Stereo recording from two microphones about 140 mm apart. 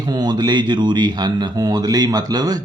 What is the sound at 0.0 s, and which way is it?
Speech, 30° right (ahead or behind).